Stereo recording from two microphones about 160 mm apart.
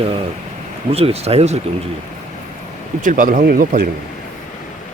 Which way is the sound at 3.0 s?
55° right (ahead or behind).